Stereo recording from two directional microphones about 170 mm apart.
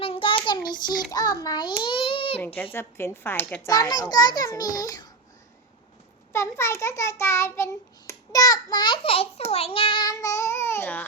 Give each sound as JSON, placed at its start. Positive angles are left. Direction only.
{"t": 0.0, "sound": "child singing", "side_deg": 30}
{"t": 1.1, "sound": "a child's voice", "side_deg": 20}
{"t": 2.7, "sound": "child singing", "side_deg": 15}
{"t": 3.7, "sound": "a child's voice", "side_deg": 20}
{"t": 6.3, "sound": "child singing", "side_deg": 15}
{"t": 9.5, "sound": "a child's voice", "side_deg": 35}